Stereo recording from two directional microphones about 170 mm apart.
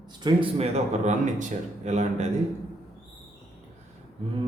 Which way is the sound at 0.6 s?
45° right (ahead or behind).